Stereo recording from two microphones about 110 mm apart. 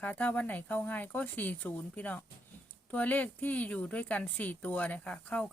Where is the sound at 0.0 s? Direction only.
15° left (ahead or behind).